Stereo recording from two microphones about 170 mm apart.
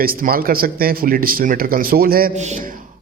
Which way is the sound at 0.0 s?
55° right (ahead or behind).